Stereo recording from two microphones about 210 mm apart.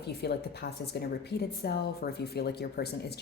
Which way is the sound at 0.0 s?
50° left (ahead or behind).